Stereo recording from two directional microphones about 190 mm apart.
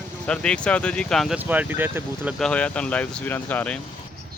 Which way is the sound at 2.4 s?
5° left (ahead or behind).